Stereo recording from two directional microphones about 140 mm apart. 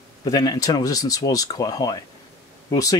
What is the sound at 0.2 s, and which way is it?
Speech, 25° left (ahead or behind).